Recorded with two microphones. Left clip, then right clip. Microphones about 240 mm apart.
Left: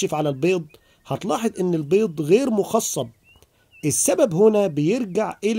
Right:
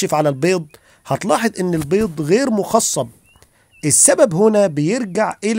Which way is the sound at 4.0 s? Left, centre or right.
Right.